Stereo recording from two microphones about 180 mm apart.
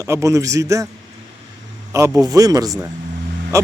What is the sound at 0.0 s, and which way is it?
Speech, 15° right (ahead or behind).